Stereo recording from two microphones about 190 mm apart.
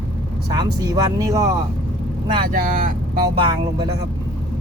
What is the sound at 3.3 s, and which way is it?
Speech, 25° right (ahead or behind).